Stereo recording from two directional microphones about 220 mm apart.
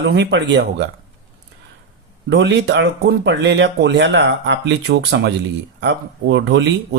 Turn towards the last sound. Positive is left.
turn(degrees=-50)  # may be behind; listen again after turning